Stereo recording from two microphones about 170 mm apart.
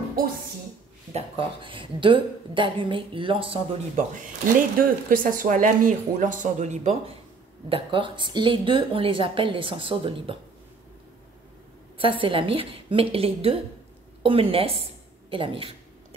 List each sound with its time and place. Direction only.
1.1 s a woman's voice: 30° right (ahead or behind)
4.1 s speech: 55° right (ahead or behind)
7.7 s speech: 30° right (ahead or behind)
12.0 s a woman's voice: 30° right (ahead or behind)